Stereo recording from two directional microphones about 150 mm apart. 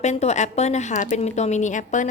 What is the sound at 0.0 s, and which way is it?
A woman's voice, 50° left (ahead or behind).